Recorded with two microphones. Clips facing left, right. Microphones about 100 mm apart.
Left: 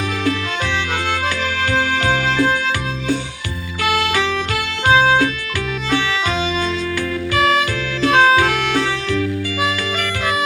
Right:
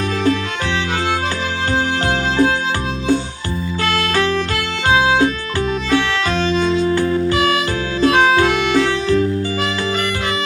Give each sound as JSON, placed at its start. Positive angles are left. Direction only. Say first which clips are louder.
{"t": 1.7, "sound": "music", "louder": "even", "side_deg": -20}
{"t": 4.1, "sound": "music", "louder": "right 2 dB", "side_deg": 15}
{"t": 6.9, "sound": "music", "louder": "right 6 dB", "side_deg": -30}
{"t": 8.1, "sound": "music", "louder": "left 2 dB", "side_deg": 0}